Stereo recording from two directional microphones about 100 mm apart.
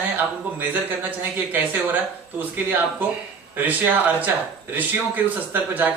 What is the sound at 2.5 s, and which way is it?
Speech, 20° right (ahead or behind).